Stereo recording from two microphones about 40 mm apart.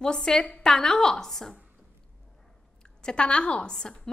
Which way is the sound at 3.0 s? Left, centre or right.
Left.